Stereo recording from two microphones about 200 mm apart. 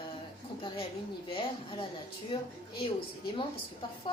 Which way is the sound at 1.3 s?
25° left (ahead or behind).